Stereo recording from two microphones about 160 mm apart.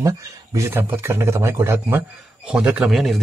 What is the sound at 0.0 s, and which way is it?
Speech, 20° right (ahead or behind).